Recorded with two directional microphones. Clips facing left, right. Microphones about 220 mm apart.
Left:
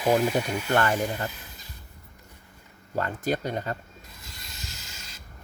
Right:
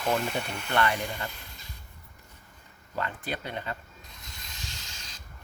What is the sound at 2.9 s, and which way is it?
Speech, 45° left (ahead or behind).